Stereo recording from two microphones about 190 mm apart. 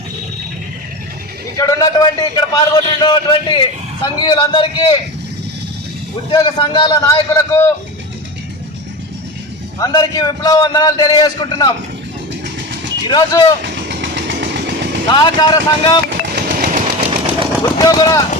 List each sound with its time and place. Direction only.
1.5 s a man's voice: 20° left (ahead or behind)
6.3 s a man's voice: 25° left (ahead or behind)
9.8 s a man's voice: 20° left (ahead or behind)
13.1 s a man's voice: 20° left (ahead or behind)
13.6 s vehicle: 65° right (ahead or behind)
15.1 s a man's voice: 25° left (ahead or behind)
16.0 s jackhammer: 55° right (ahead or behind)
17.6 s a man's voice: 20° left (ahead or behind)